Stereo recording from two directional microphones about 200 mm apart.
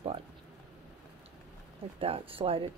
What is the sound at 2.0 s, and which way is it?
Speech, 30° right (ahead or behind).